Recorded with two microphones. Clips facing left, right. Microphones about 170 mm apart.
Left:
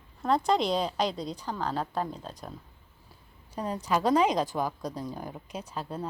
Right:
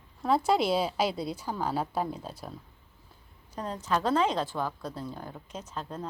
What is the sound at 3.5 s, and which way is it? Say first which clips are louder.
A woman's voice: left 2 dB; 10° left (ahead or behind).